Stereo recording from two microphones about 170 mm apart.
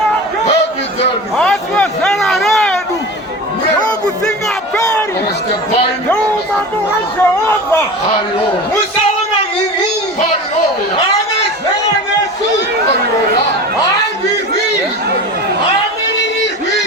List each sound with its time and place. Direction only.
1.4 s a sound: 5° left (ahead or behind)
4.3 s music: 5° left (ahead or behind)
7.2 s speech: 10° left (ahead or behind)